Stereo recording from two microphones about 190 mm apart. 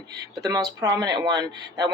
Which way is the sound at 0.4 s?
20° right (ahead or behind).